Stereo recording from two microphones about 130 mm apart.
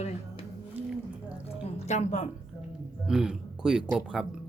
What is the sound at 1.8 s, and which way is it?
Speech, 65° left (ahead or behind).